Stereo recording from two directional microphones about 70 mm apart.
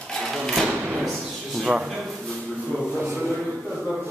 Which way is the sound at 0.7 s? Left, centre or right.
Centre.